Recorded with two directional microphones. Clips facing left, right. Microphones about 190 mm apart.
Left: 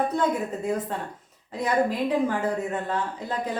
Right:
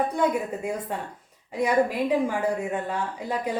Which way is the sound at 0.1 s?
10° right (ahead or behind).